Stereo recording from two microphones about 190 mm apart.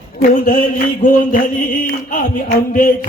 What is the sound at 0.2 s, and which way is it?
Mantra, 45° left (ahead or behind).